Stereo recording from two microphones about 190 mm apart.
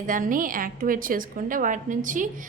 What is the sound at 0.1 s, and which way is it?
A woman's voice, 45° right (ahead or behind).